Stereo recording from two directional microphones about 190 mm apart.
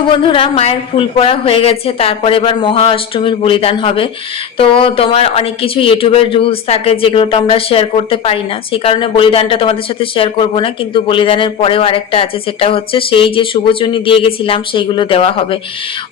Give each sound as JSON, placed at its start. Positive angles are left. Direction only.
{"t": 0.1, "sound": "a man's voice", "side_deg": 25}